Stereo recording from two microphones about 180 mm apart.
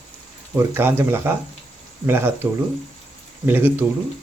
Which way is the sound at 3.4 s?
10° right (ahead or behind).